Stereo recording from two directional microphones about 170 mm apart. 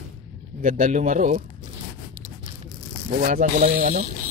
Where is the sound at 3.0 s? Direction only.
50° right (ahead or behind).